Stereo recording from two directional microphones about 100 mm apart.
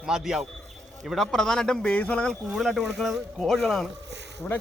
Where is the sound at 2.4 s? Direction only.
Centre (ahead or behind).